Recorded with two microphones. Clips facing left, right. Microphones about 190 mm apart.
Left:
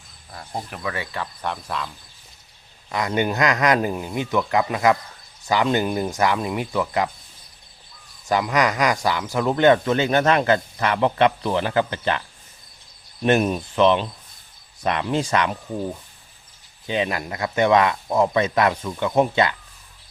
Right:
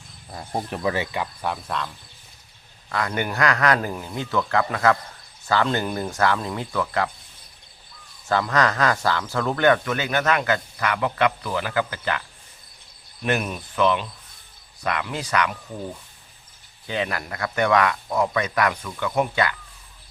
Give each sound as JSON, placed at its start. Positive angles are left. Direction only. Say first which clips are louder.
{"t": 0.7, "sound": "speech", "louder": "right 6 dB", "side_deg": -30}
{"t": 1.1, "sound": "cricket", "louder": "right 1 dB", "side_deg": -10}
{"t": 2.9, "sound": "speech", "louder": "left 4 dB", "side_deg": 20}
{"t": 8.3, "sound": "speech", "louder": "left 1 dB", "side_deg": 15}
{"t": 13.2, "sound": "speech", "louder": "left 6 dB", "side_deg": 30}
{"t": 16.8, "sound": "speech", "louder": "left 3 dB", "side_deg": 20}